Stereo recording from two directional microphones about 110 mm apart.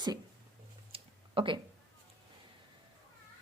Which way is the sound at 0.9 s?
55° right (ahead or behind).